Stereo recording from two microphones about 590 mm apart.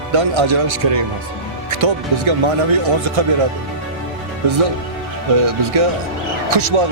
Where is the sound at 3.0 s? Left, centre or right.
Right.